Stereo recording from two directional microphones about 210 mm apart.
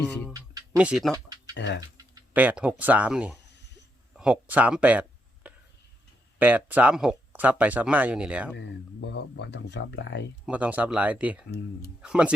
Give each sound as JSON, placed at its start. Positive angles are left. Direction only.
{"t": 0.1, "sound": "speech", "side_deg": 5}
{"t": 0.3, "sound": "a sound", "side_deg": -15}
{"t": 0.8, "sound": "speech", "side_deg": -5}
{"t": 1.1, "sound": "a sound", "side_deg": -15}
{"t": 1.5, "sound": "speech", "side_deg": 55}
{"t": 2.3, "sound": "speech", "side_deg": -5}
{"t": 4.1, "sound": "a sound", "side_deg": -5}
{"t": 6.4, "sound": "speech", "side_deg": -5}
{"t": 8.5, "sound": "speech", "side_deg": 55}
{"t": 10.4, "sound": "speech", "side_deg": -5}